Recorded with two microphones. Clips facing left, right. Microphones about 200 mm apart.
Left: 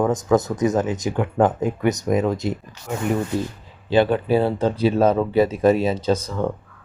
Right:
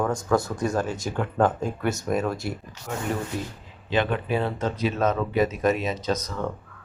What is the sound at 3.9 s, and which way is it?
Speech, 35° left (ahead or behind).